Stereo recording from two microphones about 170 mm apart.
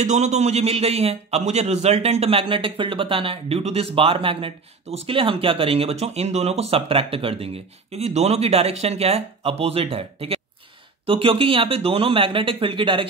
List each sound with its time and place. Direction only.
0.0 s a man's voice: 45° right (ahead or behind)